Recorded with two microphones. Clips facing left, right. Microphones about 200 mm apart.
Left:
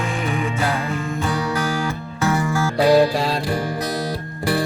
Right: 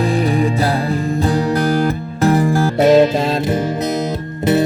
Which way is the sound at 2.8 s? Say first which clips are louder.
Right 4 dB; 20° right (ahead or behind).